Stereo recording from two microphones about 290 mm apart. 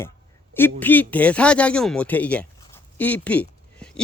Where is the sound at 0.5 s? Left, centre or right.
Centre.